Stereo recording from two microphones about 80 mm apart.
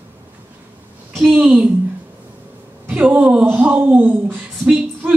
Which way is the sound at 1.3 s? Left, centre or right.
Centre.